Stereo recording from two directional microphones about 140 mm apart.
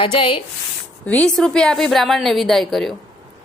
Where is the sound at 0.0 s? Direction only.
40° left (ahead or behind).